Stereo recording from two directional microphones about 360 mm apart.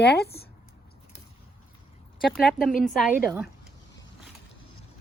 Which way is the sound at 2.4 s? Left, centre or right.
Centre.